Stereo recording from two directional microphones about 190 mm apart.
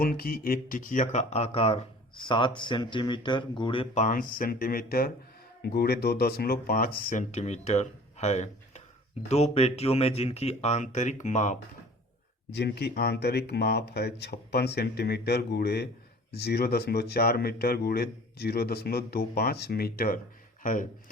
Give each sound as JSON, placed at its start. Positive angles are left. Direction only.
{"t": 0.0, "sound": "speech", "side_deg": 50}
{"t": 12.5, "sound": "speech", "side_deg": 60}